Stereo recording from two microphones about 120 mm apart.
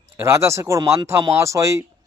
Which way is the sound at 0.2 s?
25° right (ahead or behind).